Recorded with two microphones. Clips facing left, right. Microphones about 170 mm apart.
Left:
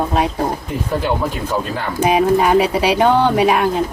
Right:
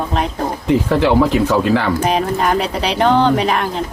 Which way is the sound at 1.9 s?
10° left (ahead or behind).